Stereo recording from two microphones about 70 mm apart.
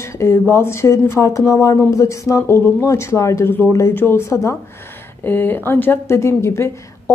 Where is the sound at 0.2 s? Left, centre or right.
Left.